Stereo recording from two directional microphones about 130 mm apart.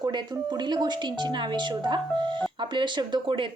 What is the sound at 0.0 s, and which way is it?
Speech, 35° right (ahead or behind).